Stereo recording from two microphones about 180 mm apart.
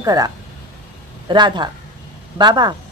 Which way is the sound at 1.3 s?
25° right (ahead or behind).